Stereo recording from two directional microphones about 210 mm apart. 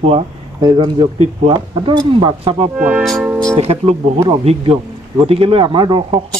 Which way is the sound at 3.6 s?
30° right (ahead or behind).